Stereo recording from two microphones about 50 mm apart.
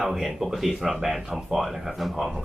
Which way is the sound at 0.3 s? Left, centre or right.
Centre.